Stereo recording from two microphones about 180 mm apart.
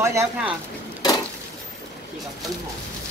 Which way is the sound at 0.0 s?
15° right (ahead or behind).